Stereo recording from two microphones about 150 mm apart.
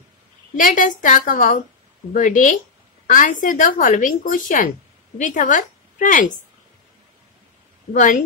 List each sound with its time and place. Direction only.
0.6 s a woman's voice: 60° left (ahead or behind)
7.9 s a woman's voice: 60° left (ahead or behind)